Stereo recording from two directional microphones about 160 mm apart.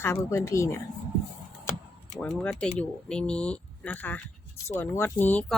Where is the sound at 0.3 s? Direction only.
20° left (ahead or behind).